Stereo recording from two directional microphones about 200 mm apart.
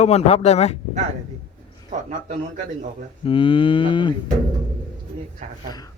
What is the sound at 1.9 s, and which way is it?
Speech, 40° right (ahead or behind).